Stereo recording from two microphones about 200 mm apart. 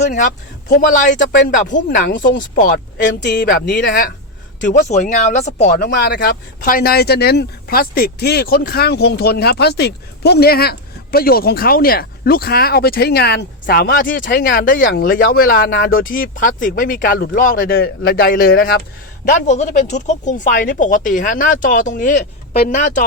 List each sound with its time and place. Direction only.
0.7 s speech: 40° left (ahead or behind)
3.7 s speech: 60° left (ahead or behind)
4.6 s speech: 35° left (ahead or behind)
5.7 s speech: 55° left (ahead or behind)
19.3 s speech: 35° left (ahead or behind)